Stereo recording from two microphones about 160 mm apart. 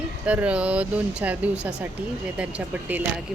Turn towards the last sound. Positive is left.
turn(degrees=-10)  # may be behind; listen again after turning